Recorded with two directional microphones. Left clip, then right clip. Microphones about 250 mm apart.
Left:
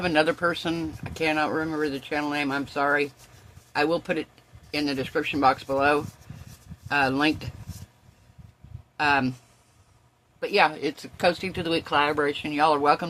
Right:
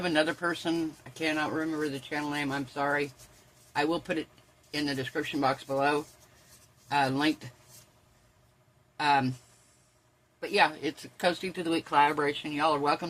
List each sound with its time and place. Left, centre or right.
0.0 s speech: centre
9.0 s speech: centre
10.4 s speech: left